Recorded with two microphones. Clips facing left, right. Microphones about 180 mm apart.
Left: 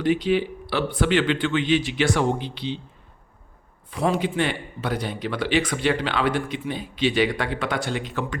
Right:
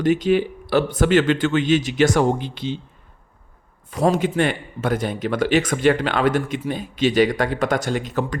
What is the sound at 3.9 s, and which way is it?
Speech, 45° right (ahead or behind).